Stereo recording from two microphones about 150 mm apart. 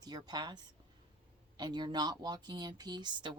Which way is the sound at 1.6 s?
30° right (ahead or behind).